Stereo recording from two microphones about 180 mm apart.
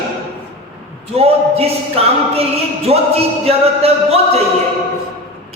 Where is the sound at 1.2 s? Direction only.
35° right (ahead or behind).